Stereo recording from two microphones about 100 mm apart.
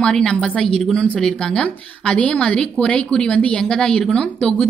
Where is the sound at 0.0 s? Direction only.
10° left (ahead or behind).